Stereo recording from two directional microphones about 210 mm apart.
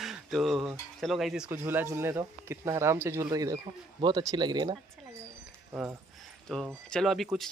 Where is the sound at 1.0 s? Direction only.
Centre (ahead or behind); by 4.8 s 20° right (ahead or behind).